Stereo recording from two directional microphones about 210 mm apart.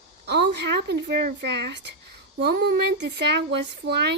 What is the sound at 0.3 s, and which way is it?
Speech, 55° right (ahead or behind).